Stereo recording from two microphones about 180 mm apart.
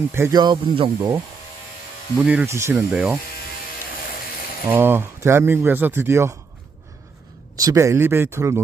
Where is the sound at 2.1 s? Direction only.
5° right (ahead or behind).